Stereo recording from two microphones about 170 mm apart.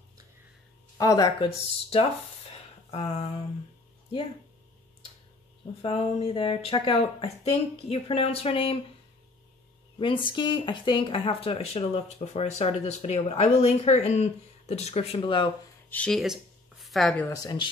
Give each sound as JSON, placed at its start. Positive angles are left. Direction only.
{"t": 0.9, "sound": "speech", "side_deg": 20}
{"t": 1.4, "sound": "speech", "side_deg": 35}
{"t": 2.9, "sound": "a sound", "side_deg": 35}
{"t": 5.8, "sound": "speech", "side_deg": 35}
{"t": 9.9, "sound": "speech", "side_deg": 30}
{"t": 15.9, "sound": "speech", "side_deg": 5}
{"t": 17.3, "sound": "speech", "side_deg": 25}